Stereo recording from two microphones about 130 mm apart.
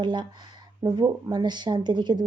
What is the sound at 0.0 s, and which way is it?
A woman's voice, 35° right (ahead or behind).